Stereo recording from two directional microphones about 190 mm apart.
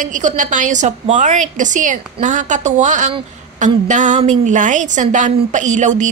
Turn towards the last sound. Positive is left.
turn(degrees=-40)  # may be behind; listen again after turning